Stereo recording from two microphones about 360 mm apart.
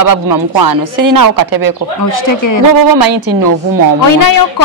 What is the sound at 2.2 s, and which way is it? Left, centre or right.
Speech, left.